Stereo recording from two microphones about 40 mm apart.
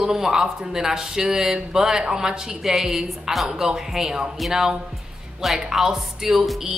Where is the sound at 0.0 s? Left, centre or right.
Centre.